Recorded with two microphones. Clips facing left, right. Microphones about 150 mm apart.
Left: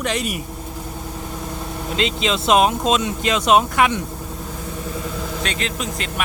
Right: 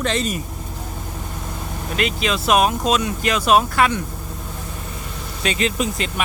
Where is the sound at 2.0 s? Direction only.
20° left (ahead or behind).